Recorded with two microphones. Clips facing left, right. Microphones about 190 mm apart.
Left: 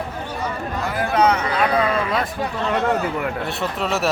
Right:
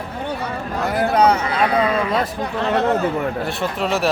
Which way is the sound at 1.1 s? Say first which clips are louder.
Right 1 dB; 35° right (ahead or behind).